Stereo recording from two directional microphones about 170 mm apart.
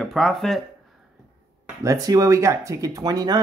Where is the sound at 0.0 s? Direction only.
Centre (ahead or behind).